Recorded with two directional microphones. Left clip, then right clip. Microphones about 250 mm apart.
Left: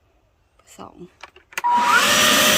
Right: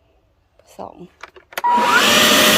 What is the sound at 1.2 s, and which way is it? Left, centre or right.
Vacuum cleaner, right.